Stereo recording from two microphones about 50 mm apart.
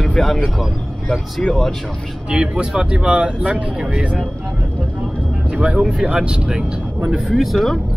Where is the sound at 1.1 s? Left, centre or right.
Centre.